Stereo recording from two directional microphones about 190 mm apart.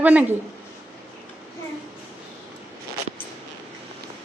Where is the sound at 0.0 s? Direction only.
10° right (ahead or behind).